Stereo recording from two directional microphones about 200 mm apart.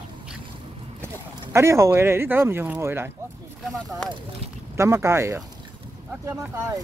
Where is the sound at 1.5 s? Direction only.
15° right (ahead or behind).